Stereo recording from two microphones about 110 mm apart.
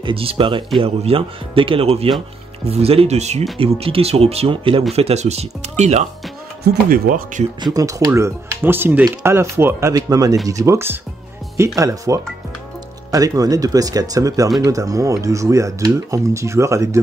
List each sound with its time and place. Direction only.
0.0 s speech: 55° right (ahead or behind); by 3.4 s 85° right
3.5 s speech: 60° right (ahead or behind)
4.9 s speech: 80° right
7.6 s speech: 35° right (ahead or behind)
8.1 s speech: 20° right (ahead or behind)
9.9 s speech: 35° right (ahead or behind)